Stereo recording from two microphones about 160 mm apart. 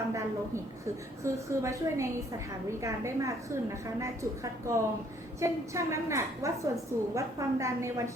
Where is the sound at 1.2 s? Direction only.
20° right (ahead or behind).